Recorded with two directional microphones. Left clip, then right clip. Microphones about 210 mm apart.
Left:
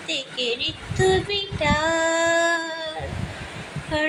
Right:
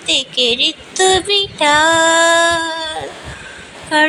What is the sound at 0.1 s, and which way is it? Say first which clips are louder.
Speech: right 11 dB; 30° right (ahead or behind).